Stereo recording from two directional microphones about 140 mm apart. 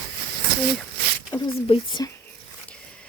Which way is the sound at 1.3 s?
35° left (ahead or behind).